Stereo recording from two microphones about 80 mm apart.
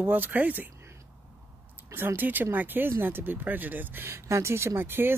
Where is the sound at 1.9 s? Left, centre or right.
Right.